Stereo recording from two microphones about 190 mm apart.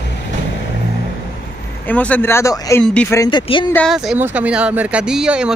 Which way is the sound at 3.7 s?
Centre (ahead or behind).